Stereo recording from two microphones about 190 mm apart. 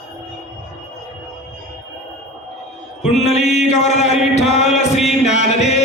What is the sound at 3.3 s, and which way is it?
Mantra, 35° left (ahead or behind).